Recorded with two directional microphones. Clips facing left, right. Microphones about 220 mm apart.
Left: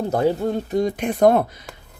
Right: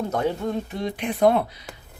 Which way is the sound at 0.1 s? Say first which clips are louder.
Left 5 dB; 35° left (ahead or behind).